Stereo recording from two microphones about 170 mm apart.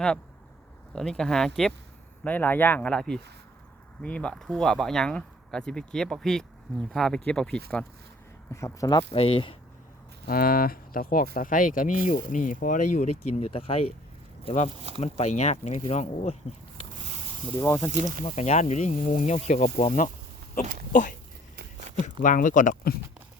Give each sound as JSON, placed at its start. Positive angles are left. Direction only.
{"t": 0.9, "sound": "speech", "side_deg": 5}
{"t": 8.5, "sound": "speech", "side_deg": 20}
{"t": 9.1, "sound": "speech", "side_deg": 35}
{"t": 10.2, "sound": "speech", "side_deg": 60}
{"t": 17.6, "sound": "speech", "side_deg": 20}
{"t": 18.3, "sound": "speech", "side_deg": 40}
{"t": 22.2, "sound": "speech", "side_deg": 50}